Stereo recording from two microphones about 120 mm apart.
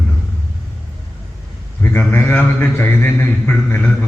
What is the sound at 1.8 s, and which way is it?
A man's voice, 15° left (ahead or behind).